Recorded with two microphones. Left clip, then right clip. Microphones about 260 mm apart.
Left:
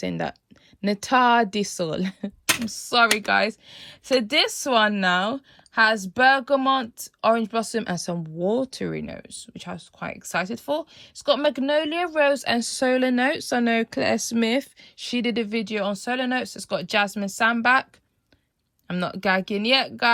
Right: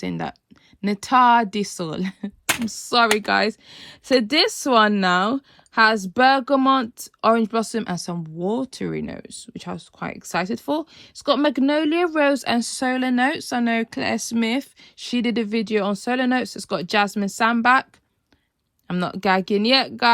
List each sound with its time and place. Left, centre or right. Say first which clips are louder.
0.0 s speech: left 1 dB; centre
18.9 s speech: right 2 dB; centre